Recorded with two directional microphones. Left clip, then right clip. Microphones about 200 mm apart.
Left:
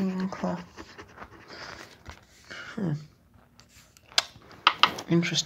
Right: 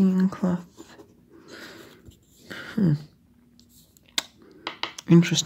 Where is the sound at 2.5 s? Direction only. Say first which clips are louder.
Right 6 dB; 55° right (ahead or behind).